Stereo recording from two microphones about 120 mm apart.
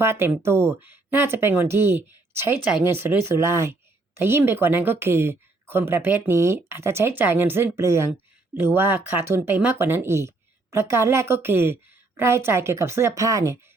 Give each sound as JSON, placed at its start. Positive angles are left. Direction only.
{"t": 0.0, "sound": "speech", "side_deg": -20}